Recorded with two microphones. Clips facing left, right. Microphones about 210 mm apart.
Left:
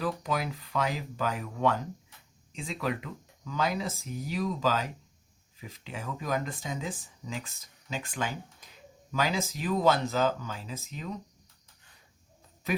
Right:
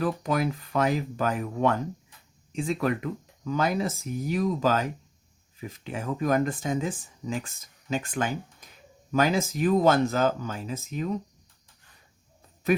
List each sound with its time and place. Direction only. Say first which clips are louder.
0.0 s speech: right 5 dB; 50° right (ahead or behind)